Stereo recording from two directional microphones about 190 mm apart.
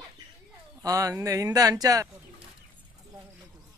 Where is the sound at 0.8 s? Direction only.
15° right (ahead or behind).